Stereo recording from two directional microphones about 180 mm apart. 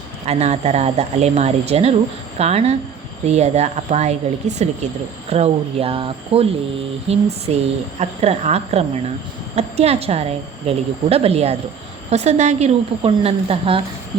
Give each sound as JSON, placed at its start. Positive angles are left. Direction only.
{"t": 0.3, "sound": "speech", "side_deg": -35}